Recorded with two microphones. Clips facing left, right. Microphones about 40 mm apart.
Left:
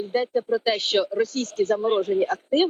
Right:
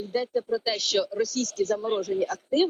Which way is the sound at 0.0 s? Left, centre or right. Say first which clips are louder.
Left 4 dB; left.